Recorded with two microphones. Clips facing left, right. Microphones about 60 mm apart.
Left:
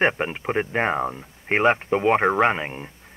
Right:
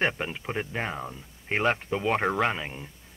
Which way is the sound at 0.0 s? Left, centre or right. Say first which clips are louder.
Left 6 dB; left.